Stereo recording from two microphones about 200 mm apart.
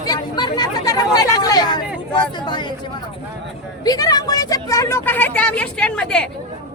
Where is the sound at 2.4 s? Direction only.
20° left (ahead or behind).